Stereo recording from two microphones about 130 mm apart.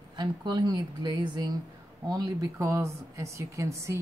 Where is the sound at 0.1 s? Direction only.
35° right (ahead or behind).